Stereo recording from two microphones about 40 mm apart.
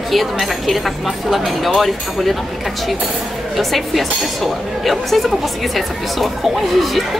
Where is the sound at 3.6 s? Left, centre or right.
Centre.